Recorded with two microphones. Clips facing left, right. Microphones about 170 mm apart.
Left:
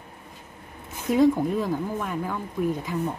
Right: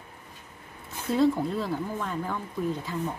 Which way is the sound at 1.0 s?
15° left (ahead or behind).